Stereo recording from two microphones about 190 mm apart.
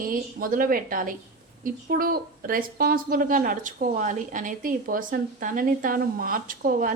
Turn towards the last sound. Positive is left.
turn(degrees=-45)  # may be behind; listen again after turning